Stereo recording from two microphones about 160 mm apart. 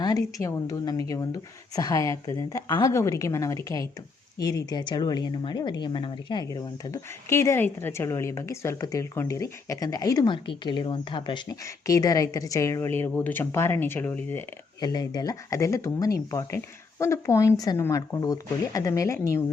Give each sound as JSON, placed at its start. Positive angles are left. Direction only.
{"t": 0.0, "sound": "speech", "side_deg": 20}
{"t": 14.8, "sound": "speech", "side_deg": 25}